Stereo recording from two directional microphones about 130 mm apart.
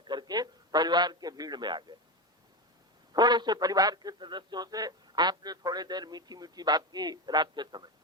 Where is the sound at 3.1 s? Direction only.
35° right (ahead or behind).